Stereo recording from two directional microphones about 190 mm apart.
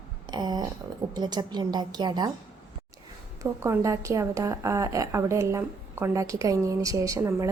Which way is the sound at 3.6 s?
15° right (ahead or behind).